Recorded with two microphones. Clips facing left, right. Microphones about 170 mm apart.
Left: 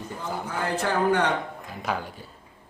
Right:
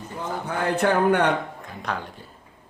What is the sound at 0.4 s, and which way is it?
Speech, 60° right (ahead or behind).